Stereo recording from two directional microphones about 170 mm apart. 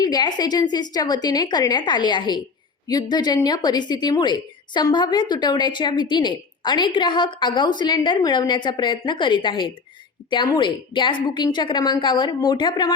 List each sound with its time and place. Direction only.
0.0 s a woman's voice: 25° left (ahead or behind)